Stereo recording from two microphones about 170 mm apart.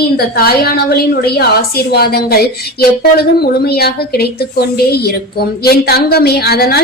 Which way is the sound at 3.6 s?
65° left (ahead or behind).